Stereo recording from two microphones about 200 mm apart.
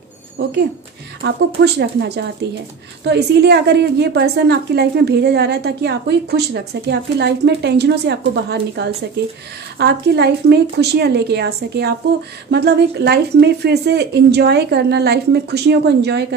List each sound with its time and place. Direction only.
0.4 s a woman's voice: 55° right (ahead or behind)